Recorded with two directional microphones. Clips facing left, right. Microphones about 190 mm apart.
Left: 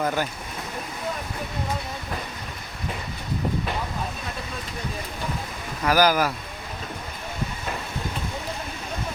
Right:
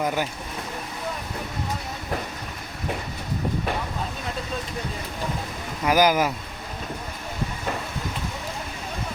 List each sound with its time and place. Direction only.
0.0 s speech: 15° right (ahead or behind)
5.8 s speech: 20° right (ahead or behind)